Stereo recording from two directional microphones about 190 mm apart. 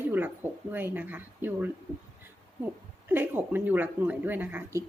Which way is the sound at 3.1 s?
10° right (ahead or behind).